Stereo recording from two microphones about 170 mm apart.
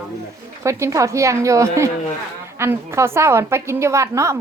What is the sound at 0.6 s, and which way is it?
A woman's voice, 15° right (ahead or behind).